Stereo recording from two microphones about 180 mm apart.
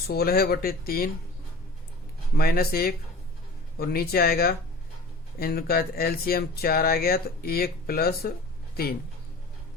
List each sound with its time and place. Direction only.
0.1 s speech: 60° left (ahead or behind)
2.3 s speech: 55° left (ahead or behind)